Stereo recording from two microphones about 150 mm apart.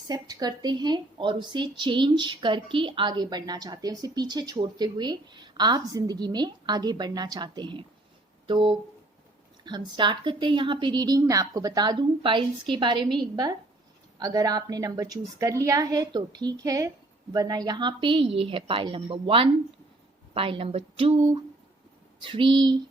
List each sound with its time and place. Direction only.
0.1 s a woman's voice: 25° right (ahead or behind)